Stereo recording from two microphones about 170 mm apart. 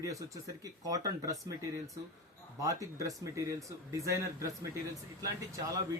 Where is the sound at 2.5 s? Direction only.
20° right (ahead or behind).